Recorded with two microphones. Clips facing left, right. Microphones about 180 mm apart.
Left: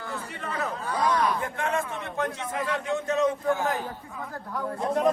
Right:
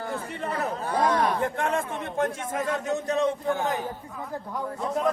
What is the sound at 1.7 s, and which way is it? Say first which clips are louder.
A man's voice: right 2 dB; 45° right (ahead or behind).